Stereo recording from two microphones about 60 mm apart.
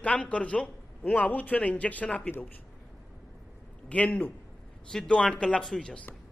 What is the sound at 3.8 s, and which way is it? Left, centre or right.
A man's voice, left.